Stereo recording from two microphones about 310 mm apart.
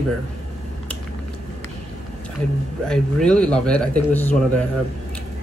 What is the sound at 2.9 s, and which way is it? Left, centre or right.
A man's voice, centre.